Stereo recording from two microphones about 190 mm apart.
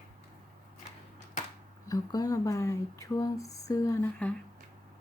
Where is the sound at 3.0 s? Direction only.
15° left (ahead or behind).